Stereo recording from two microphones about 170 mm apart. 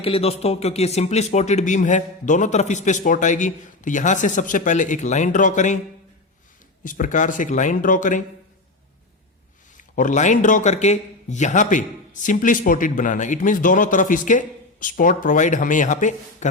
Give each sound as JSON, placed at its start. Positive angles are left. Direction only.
{"t": 0.0, "sound": "a man's voice", "side_deg": 35}
{"t": 6.8, "sound": "a man's voice", "side_deg": 50}
{"t": 9.7, "sound": "a man's voice", "side_deg": 50}